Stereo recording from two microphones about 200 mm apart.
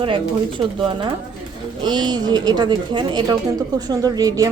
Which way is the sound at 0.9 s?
25° right (ahead or behind).